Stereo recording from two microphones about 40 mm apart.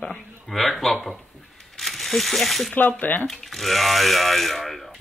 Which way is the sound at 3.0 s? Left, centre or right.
Left.